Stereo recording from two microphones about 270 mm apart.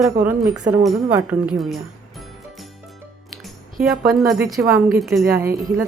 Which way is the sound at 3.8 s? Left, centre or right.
Centre.